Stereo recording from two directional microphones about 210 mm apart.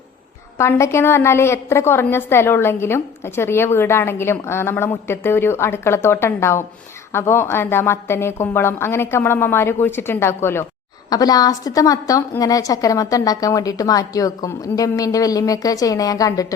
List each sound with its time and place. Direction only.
0.6 s a woman's voice: 15° left (ahead or behind)